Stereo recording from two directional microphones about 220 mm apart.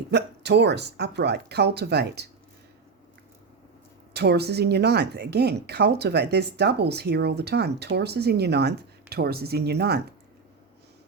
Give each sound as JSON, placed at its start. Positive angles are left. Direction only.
{"t": 0.1, "sound": "a woman's voice", "side_deg": -50}
{"t": 4.1, "sound": "a woman's voice", "side_deg": -50}